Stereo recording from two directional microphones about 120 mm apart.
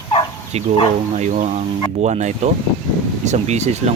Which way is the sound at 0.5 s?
65° right (ahead or behind).